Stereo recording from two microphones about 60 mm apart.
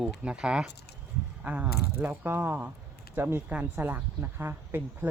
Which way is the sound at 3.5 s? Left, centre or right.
Right.